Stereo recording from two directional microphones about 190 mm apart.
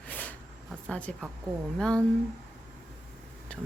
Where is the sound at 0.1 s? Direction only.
10° left (ahead or behind).